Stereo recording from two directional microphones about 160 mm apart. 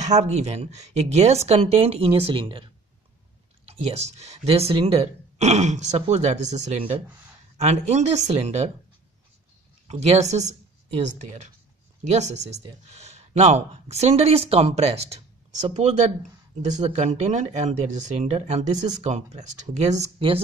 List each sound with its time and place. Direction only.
0.0 s speech: 45° right (ahead or behind)
9.8 s speech: 45° right (ahead or behind)